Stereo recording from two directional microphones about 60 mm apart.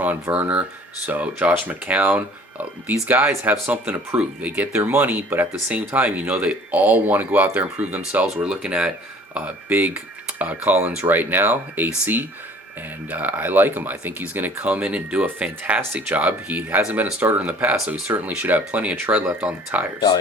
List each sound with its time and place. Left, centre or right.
0.0 s speech: right
9.3 s speech: right
13.1 s speech: right